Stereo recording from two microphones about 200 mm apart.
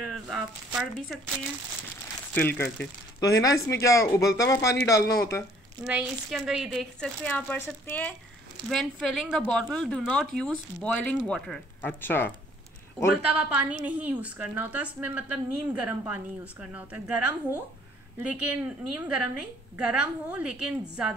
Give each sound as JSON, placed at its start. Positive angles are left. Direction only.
{"t": 0.1, "sound": "speech", "side_deg": 0}
{"t": 2.3, "sound": "speech", "side_deg": 10}
{"t": 5.9, "sound": "speech", "side_deg": -5}
{"t": 13.1, "sound": "a woman's voice", "side_deg": -5}